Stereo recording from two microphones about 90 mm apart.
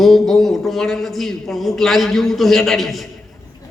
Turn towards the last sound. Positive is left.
turn(degrees=0)  # may be behind; listen again after turning